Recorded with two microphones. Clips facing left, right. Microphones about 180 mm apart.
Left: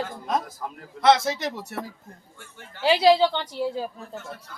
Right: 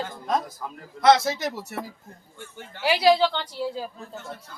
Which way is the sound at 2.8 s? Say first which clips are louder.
Left 2 dB; 25° left (ahead or behind).